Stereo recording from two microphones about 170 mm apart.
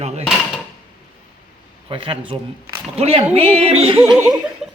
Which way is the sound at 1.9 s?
30° right (ahead or behind).